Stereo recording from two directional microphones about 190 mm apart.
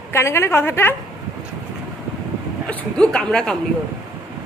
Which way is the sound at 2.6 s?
5° left (ahead or behind).